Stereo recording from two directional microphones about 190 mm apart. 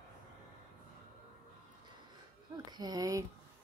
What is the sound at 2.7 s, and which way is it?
Speech, 20° right (ahead or behind).